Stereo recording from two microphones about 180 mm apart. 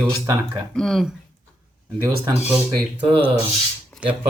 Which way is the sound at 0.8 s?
Centre (ahead or behind).